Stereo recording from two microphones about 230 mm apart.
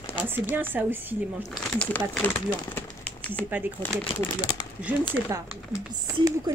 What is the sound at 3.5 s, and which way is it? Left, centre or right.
Speech, centre.